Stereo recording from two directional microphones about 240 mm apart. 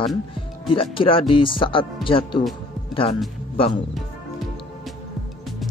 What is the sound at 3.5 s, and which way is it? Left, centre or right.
Speech, left.